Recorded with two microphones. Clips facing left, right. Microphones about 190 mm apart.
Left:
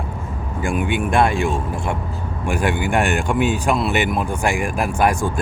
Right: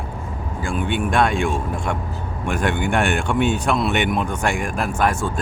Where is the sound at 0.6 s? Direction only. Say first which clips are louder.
Left 2 dB; 10° left (ahead or behind).